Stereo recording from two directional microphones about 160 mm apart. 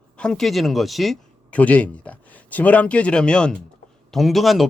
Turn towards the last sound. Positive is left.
turn(degrees=0)  # may be behind; listen again after turning